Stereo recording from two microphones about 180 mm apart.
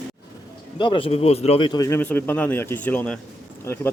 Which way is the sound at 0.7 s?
25° left (ahead or behind).